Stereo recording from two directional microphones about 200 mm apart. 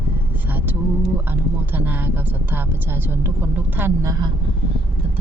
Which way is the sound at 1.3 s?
10° right (ahead or behind).